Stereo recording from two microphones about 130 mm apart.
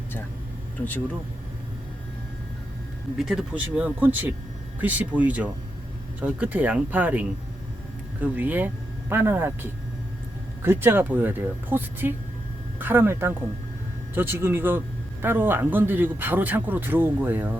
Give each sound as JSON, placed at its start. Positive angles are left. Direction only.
{"t": 3.2, "sound": "speech", "side_deg": -5}
{"t": 10.6, "sound": "speech", "side_deg": -15}